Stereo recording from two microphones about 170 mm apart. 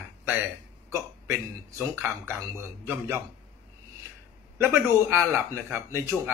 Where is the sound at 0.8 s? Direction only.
15° right (ahead or behind).